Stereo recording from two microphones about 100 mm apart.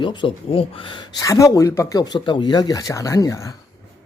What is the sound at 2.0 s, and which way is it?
Speech, 50° left (ahead or behind).